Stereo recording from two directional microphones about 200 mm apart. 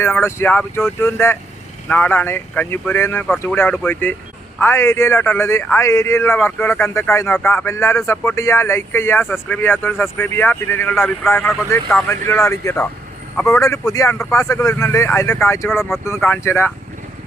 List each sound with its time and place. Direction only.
0.0 s speech: 10° left (ahead or behind)